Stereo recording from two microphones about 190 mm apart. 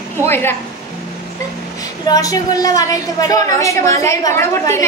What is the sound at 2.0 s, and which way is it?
A woman's voice, 20° left (ahead or behind).